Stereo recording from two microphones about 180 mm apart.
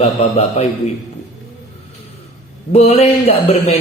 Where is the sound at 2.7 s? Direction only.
35° left (ahead or behind).